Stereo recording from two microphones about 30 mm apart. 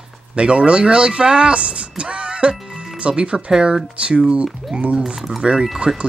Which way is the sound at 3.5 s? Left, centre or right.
Right.